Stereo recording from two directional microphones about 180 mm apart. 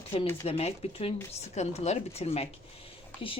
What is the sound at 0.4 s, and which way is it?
Speech, 35° left (ahead or behind).